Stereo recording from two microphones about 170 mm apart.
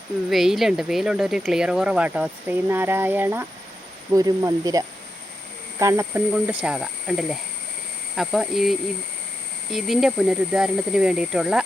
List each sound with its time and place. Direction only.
0.3 s speech: centre (ahead or behind)
4.1 s insect: 20° right (ahead or behind)
5.8 s speech: 15° right (ahead or behind)